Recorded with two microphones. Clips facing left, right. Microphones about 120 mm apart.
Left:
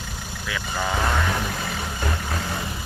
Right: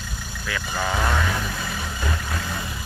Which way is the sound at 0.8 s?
5° left (ahead or behind).